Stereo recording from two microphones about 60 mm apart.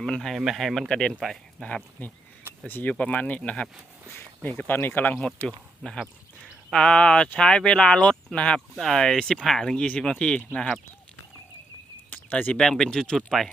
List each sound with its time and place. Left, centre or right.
0.0 s speech: centre
0.3 s speech: centre
1.2 s speech: centre
1.6 s speech: centre
2.6 s speech: left
4.6 s speech: left
5.5 s speech: centre
12.1 s a sound: left
12.5 s speech: centre